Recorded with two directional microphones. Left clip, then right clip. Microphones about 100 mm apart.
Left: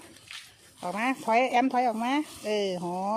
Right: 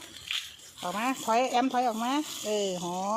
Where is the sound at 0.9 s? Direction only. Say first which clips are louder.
Left 2 dB; 55° left (ahead or behind).